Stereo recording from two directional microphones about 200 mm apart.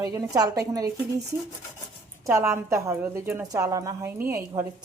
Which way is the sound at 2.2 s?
15° right (ahead or behind).